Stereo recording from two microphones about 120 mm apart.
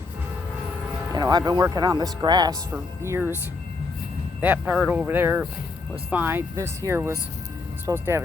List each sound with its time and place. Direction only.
1.1 s speech: 35° right (ahead or behind)
2.7 s speech: 20° right (ahead or behind)
4.4 s speech: 15° right (ahead or behind)